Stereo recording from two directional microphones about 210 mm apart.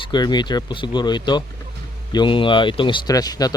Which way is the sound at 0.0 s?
20° left (ahead or behind).